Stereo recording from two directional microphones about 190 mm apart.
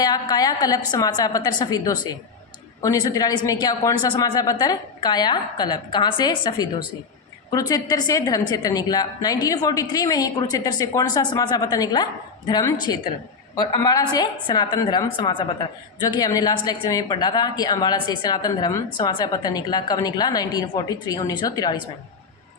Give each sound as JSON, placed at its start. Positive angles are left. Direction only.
{"t": 0.0, "sound": "a woman's voice", "side_deg": 20}